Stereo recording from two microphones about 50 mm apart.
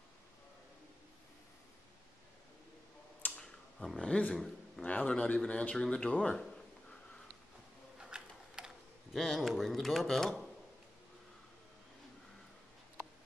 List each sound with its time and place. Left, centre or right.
3.3 s a sound: centre
4.3 s a man's voice: centre
4.8 s a man's voice: left
8.0 s typing: centre
9.1 s speech: centre